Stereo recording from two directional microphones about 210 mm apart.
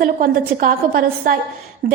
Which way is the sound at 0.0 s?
40° right (ahead or behind).